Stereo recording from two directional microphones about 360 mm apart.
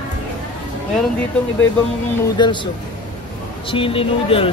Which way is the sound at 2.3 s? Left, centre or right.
Centre.